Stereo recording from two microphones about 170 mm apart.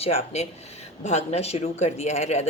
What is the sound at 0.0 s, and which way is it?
Speech, 35° left (ahead or behind).